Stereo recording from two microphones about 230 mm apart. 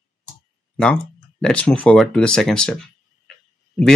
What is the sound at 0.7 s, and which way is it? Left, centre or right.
Speech, centre.